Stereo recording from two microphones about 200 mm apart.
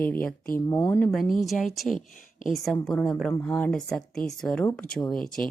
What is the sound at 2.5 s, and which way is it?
Speech, centre (ahead or behind).